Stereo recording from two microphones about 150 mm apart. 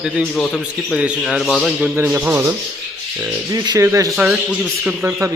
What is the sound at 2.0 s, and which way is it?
Speech, 10° right (ahead or behind).